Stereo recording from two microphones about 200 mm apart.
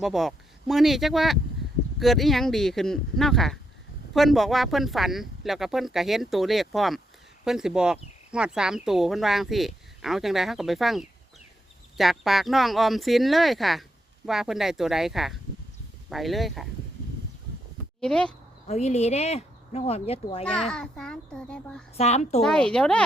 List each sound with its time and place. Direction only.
0.0 s speech: centre (ahead or behind)
18.0 s speech: 5° left (ahead or behind)
18.7 s speech: 35° left (ahead or behind)
20.4 s speech: 5° left (ahead or behind)
21.9 s speech: 35° left (ahead or behind)
22.4 s speech: 5° left (ahead or behind)